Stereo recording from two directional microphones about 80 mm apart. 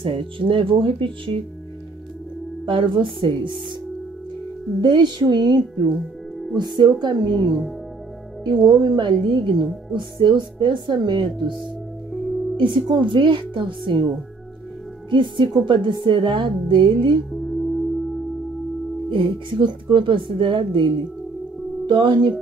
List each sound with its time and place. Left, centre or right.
0.0 s speech: right
2.6 s speech: right
4.8 s a woman's voice: right
8.5 s a woman's voice: right
9.9 s a woman's voice: right
15.0 s a woman's voice: right
17.3 s music: centre
19.0 s speech: right
21.8 s a woman's voice: right